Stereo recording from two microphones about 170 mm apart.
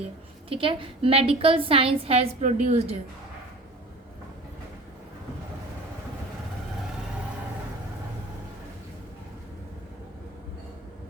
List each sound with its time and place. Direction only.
0.5 s a woman's voice: 30° right (ahead or behind)